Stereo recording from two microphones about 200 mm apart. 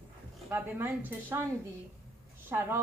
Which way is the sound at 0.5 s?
10° right (ahead or behind).